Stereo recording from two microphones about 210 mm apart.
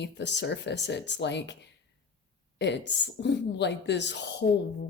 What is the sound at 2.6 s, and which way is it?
A woman's voice, 55° left (ahead or behind).